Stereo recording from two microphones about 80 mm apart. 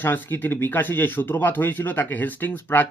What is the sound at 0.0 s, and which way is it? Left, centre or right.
Speech, left.